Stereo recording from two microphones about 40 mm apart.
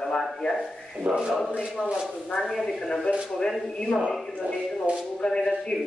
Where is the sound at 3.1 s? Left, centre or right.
Left.